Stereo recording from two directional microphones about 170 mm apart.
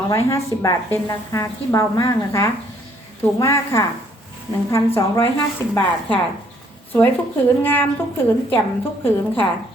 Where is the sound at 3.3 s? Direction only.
15° left (ahead or behind).